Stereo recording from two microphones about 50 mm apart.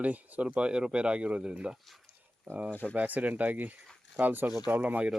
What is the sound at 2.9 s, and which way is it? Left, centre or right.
Speech, right.